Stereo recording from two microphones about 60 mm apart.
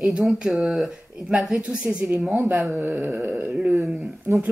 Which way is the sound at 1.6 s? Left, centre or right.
Centre.